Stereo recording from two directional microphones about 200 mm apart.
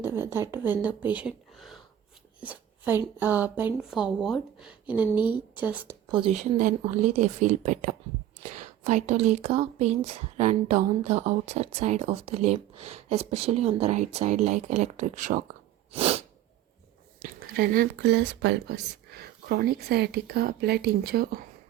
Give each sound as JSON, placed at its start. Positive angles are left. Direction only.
{"t": 0.0, "sound": "speech", "side_deg": -10}
{"t": 5.1, "sound": "a woman's voice", "side_deg": 20}
{"t": 5.5, "sound": "speech", "side_deg": -10}
{"t": 6.1, "sound": "speech", "side_deg": -25}
{"t": 15.9, "sound": "sneeze", "side_deg": -30}
{"t": 17.6, "sound": "speech", "side_deg": -45}